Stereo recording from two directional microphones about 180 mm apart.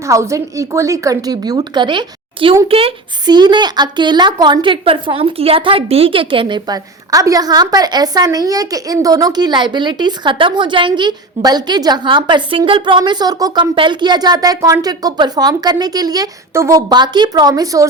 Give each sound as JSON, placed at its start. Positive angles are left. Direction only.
{"t": 0.0, "sound": "speech", "side_deg": -15}